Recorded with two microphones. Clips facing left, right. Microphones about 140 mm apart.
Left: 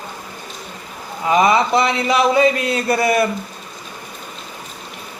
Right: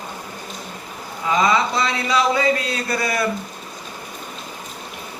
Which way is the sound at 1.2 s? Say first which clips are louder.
Left 4 dB; 20° left (ahead or behind).